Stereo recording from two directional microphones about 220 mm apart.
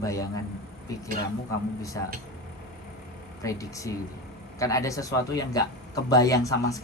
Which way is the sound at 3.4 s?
15° left (ahead or behind).